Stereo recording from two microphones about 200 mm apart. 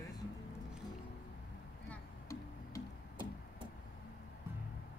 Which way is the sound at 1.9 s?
15° left (ahead or behind).